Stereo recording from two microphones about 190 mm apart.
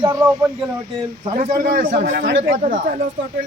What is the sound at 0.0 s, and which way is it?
Speech, 15° right (ahead or behind).